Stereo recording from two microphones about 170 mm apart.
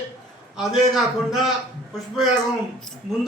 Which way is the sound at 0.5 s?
Centre (ahead or behind).